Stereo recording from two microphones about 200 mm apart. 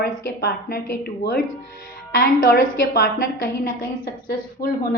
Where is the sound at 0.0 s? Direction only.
50° left (ahead or behind).